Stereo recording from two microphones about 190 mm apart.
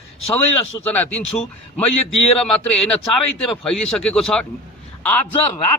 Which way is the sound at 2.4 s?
5° left (ahead or behind).